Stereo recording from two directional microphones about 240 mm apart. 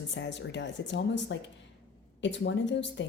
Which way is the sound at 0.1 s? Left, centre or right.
Left.